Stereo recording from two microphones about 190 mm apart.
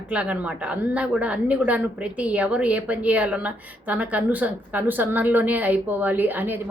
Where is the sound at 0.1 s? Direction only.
5° right (ahead or behind).